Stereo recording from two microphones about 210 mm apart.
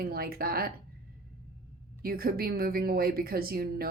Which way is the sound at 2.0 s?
45° right (ahead or behind).